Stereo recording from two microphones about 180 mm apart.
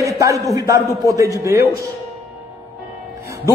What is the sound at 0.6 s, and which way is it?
A man's voice, 15° right (ahead or behind).